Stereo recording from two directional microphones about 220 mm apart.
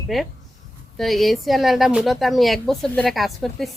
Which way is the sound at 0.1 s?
Centre (ahead or behind).